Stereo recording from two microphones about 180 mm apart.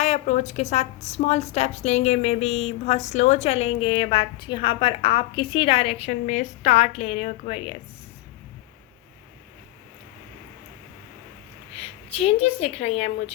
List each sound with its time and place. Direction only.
0.0 s a woman's voice: 40° left (ahead or behind)
6.1 s a woman's voice: 45° left (ahead or behind)
11.7 s a woman's voice: 35° left (ahead or behind)